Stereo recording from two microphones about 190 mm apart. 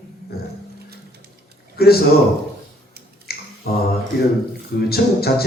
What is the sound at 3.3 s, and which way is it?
Finger snapping, 55° left (ahead or behind).